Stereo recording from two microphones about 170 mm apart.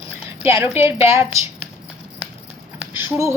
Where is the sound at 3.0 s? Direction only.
15° right (ahead or behind).